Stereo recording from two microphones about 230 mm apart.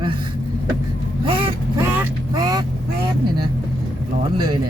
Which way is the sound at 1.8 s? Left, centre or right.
Centre.